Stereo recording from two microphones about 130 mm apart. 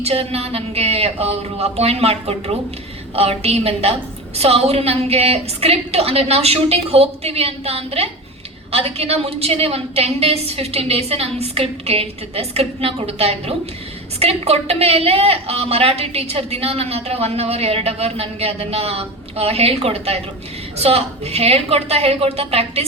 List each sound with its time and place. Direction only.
0.0 s a woman's voice: 50° right (ahead or behind)